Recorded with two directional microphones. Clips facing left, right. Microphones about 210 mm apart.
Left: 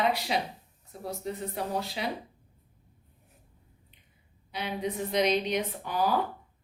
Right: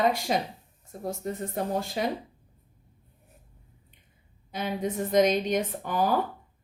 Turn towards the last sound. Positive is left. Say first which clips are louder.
# right 2 dB
turn(degrees=-50)  # may be behind; listen again after turning